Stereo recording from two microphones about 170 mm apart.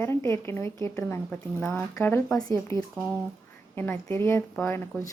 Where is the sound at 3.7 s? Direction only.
10° left (ahead or behind).